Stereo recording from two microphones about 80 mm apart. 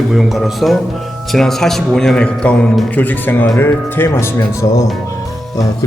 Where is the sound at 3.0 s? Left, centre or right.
Left.